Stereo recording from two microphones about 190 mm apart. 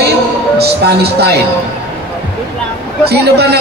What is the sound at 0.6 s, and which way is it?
Speech, 60° right (ahead or behind).